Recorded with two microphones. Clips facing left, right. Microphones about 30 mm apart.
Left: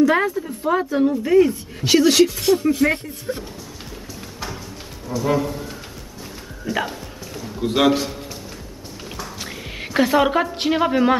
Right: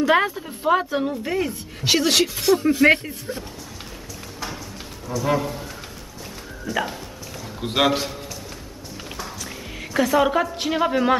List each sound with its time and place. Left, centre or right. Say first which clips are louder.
0.0 s a woman's voice: left 2 dB; right
1.2 s speech: left 9 dB; centre
2.8 s speech: right 7 dB; right
3.3 s speech: left 5 dB; centre
5.2 s speech: left 2 dB; centre
6.6 s speech: left 1 dB; centre
6.9 s music: left 1 dB; centre
7.6 s speech: left 3 dB; centre
9.4 s music: left 2 dB; left
10.2 s a man's voice: left 2 dB; centre